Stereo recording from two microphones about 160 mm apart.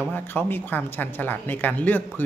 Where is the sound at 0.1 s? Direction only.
10° left (ahead or behind).